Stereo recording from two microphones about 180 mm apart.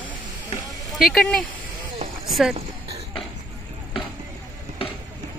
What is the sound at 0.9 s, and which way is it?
Speech, centre (ahead or behind).